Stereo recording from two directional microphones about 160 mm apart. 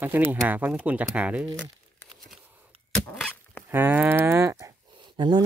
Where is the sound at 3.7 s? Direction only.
10° right (ahead or behind).